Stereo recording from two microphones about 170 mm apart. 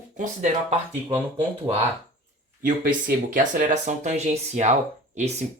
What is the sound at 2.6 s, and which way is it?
Speech, 55° right (ahead or behind).